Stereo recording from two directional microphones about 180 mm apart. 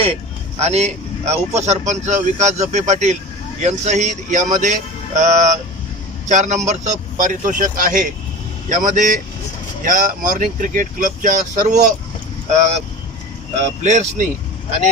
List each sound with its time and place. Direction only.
0.6 s speech: 35° right (ahead or behind)
13.8 s speech: 40° right (ahead or behind)